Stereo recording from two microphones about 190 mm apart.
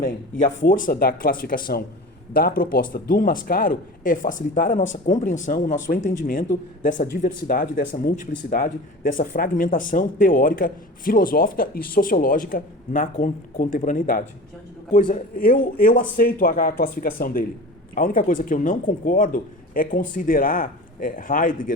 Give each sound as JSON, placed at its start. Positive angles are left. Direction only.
{"t": 0.0, "sound": "speech", "side_deg": 45}